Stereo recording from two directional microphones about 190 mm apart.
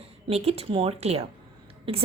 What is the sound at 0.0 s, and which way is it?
A woman's voice, 30° right (ahead or behind).